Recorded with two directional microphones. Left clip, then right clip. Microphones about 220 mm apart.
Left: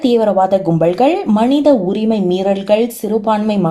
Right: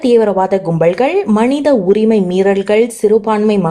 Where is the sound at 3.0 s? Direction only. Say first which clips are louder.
Right 4 dB; 25° right (ahead or behind).